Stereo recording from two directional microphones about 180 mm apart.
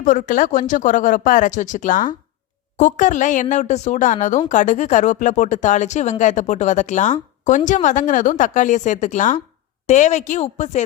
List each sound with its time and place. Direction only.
0.0 s a woman's voice: 45° left (ahead or behind)